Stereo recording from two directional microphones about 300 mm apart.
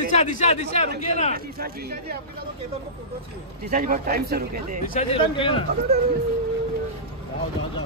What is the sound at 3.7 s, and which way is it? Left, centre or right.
Speech, right.